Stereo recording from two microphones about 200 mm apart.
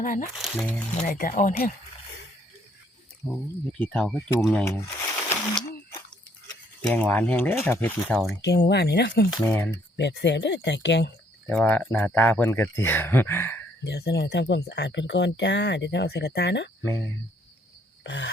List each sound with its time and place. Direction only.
0.0 s speech: 40° left (ahead or behind)
0.3 s speech: centre (ahead or behind)
0.9 s speech: 40° left (ahead or behind)
3.3 s speech: 5° left (ahead or behind)
6.9 s speech: 10° left (ahead or behind)
8.4 s speech: 55° left (ahead or behind)
9.5 s speech: 10° left (ahead or behind)
10.0 s speech: 60° left (ahead or behind)
11.4 s speech: 10° left (ahead or behind)
13.8 s speech: 55° left (ahead or behind)
18.0 s a sound: 60° left (ahead or behind)